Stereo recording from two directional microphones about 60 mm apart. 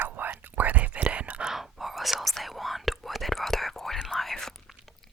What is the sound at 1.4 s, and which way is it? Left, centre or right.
Whispering, centre.